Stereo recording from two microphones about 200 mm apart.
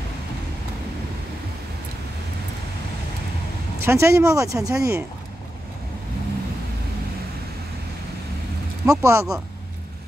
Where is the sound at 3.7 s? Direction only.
15° right (ahead or behind).